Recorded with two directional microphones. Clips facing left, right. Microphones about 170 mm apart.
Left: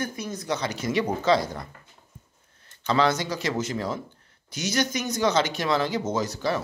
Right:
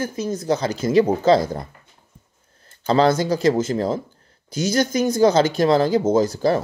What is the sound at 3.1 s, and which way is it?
Speech, 50° right (ahead or behind).